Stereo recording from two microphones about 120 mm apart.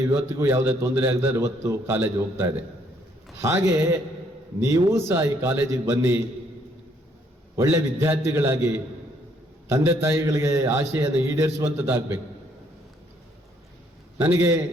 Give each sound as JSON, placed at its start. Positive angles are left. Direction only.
{"t": 0.0, "sound": "a man's voice", "side_deg": -25}
{"t": 7.5, "sound": "a man's voice", "side_deg": -20}
{"t": 14.2, "sound": "a man's voice", "side_deg": -20}